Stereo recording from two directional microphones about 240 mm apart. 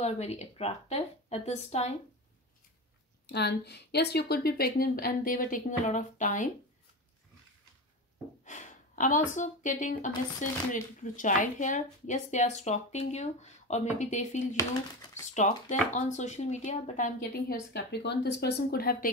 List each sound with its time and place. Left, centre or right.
0.0 s a woman's voice: left
3.3 s speech: left
8.5 s gasp: left
9.3 s a woman's voice: left
14.6 s speech: centre
15.3 s speech: left